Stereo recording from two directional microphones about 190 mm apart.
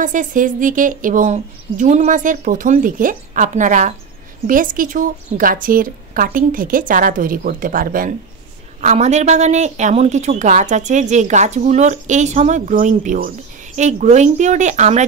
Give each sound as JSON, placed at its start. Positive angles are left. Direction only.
{"t": 0.0, "sound": "a woman's voice", "side_deg": -45}
{"t": 8.8, "sound": "a woman's voice", "side_deg": -35}